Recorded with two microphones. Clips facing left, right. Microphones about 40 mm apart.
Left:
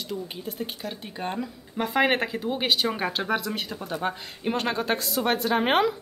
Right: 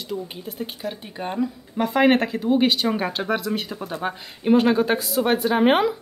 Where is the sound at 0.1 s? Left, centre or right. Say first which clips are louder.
Right 4 dB; centre.